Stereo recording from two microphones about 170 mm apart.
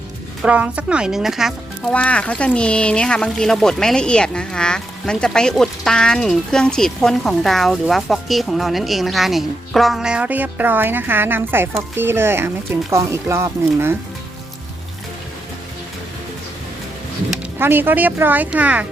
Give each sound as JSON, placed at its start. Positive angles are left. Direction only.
{"t": 0.4, "sound": "speech", "side_deg": -10}
{"t": 17.6, "sound": "speech", "side_deg": -10}